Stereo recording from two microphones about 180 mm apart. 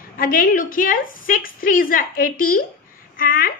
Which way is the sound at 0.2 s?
50° left (ahead or behind).